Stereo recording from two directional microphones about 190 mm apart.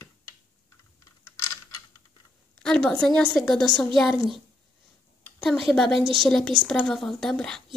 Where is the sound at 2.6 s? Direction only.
5° left (ahead or behind).